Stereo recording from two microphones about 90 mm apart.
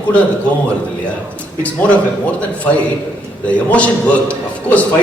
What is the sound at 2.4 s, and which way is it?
A man's voice, 15° left (ahead or behind).